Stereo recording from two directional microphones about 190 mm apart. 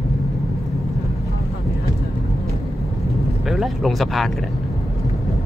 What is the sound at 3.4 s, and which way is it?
Speech, centre (ahead or behind).